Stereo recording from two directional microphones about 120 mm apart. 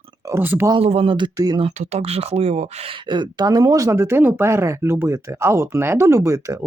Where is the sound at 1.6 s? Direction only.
60° right (ahead or behind).